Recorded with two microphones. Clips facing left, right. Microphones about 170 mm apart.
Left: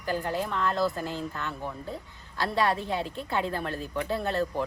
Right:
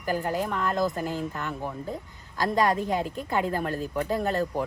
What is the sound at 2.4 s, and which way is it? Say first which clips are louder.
Speech: right 3 dB; 45° right (ahead or behind).